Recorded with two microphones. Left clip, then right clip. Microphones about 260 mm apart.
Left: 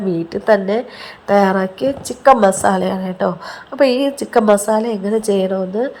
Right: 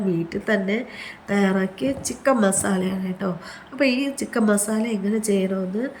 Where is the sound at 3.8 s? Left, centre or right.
Centre.